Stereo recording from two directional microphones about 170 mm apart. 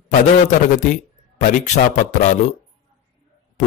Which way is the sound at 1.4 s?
45° left (ahead or behind).